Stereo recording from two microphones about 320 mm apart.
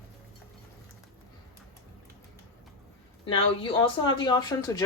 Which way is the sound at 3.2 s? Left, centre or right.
Centre.